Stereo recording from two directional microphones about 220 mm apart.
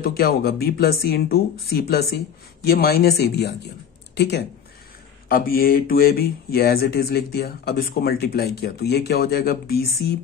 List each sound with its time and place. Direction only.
0.0 s speech: 45° left (ahead or behind)